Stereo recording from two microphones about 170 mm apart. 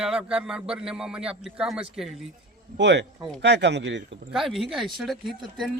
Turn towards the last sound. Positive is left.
turn(degrees=0)  # may be behind; listen again after turning